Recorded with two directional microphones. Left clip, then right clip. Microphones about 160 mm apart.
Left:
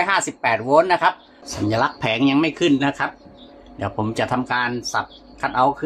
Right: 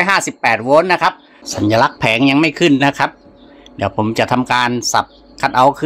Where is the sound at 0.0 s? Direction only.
90° right.